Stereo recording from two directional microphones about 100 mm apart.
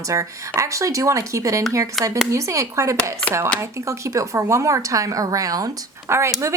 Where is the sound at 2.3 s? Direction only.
30° right (ahead or behind).